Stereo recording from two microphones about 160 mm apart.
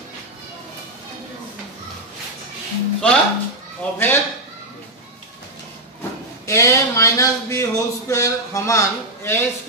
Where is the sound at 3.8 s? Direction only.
10° left (ahead or behind).